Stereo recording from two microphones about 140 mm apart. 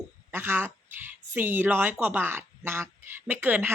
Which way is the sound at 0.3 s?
15° right (ahead or behind).